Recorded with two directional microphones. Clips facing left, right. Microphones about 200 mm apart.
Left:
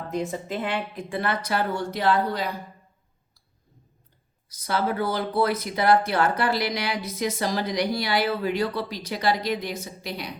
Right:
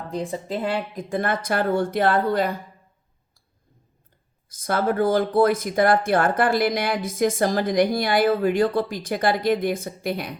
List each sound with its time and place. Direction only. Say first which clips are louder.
0.1 s speech: right 1 dB; 30° right (ahead or behind); by 2.5 s 50° right (ahead or behind)
4.4 s speech: right 3 dB; 50° right (ahead or behind)